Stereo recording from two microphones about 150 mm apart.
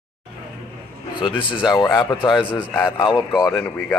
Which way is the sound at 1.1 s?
35° left (ahead or behind).